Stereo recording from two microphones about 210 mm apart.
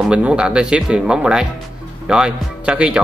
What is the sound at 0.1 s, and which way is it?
Speech, 5° right (ahead or behind).